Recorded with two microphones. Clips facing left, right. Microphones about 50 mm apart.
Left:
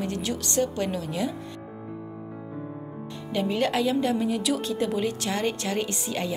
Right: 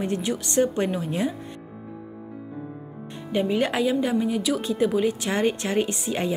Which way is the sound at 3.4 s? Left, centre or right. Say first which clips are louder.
Right 1 dB; centre.